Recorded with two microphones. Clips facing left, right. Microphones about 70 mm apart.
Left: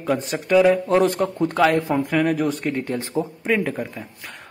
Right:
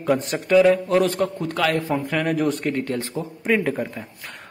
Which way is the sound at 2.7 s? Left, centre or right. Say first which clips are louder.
Left 1 dB; centre.